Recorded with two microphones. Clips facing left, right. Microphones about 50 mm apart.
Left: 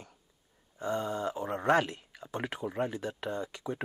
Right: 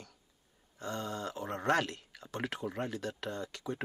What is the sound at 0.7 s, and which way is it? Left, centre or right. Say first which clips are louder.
Speech: left 6 dB; centre.